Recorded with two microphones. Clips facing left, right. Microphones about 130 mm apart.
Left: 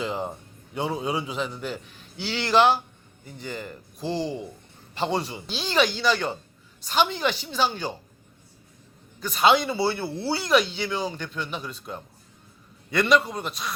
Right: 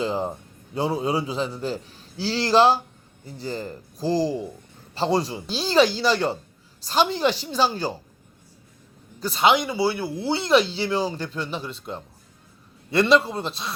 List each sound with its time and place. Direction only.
0.0 s a man's voice: 35° right (ahead or behind)
9.2 s speech: 30° right (ahead or behind)
9.5 s speech: 15° right (ahead or behind)